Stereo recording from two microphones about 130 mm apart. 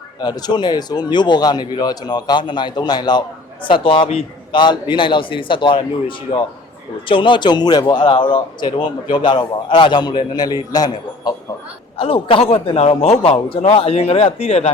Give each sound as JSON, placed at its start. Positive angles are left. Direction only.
{"t": 0.2, "sound": "speech", "side_deg": 30}
{"t": 11.9, "sound": "a man's voice", "side_deg": 45}